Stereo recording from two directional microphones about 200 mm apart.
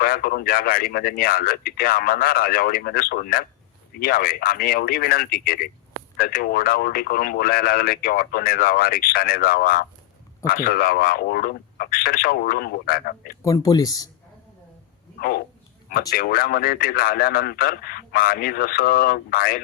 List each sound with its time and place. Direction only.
0.0 s speech: 45° left (ahead or behind)
13.4 s speech: 15° left (ahead or behind)
15.2 s speech: 50° left (ahead or behind)